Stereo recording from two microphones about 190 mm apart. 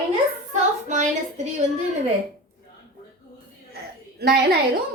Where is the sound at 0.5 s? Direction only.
40° right (ahead or behind).